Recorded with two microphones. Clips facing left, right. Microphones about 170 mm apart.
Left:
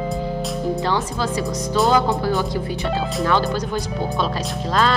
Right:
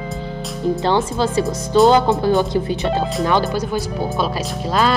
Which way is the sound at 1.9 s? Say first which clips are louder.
Right 4 dB; 25° right (ahead or behind).